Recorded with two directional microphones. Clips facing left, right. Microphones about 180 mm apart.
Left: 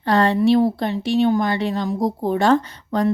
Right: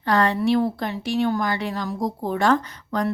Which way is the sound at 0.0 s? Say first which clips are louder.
Left 4 dB; 25° left (ahead or behind).